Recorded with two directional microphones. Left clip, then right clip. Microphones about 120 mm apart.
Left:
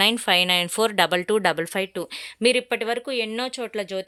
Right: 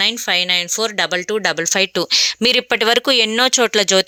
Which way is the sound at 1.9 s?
25° right (ahead or behind).